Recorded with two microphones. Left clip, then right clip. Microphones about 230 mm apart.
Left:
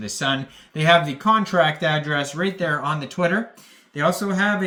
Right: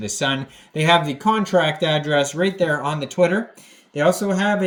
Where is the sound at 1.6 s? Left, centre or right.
Left.